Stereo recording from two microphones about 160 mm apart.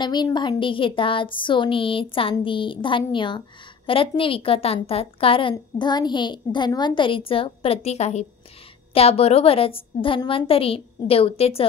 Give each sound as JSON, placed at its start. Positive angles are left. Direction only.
{"t": 0.0, "sound": "speech", "side_deg": 25}